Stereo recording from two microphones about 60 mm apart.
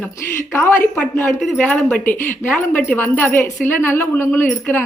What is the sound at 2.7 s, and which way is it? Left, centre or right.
A woman's voice, left.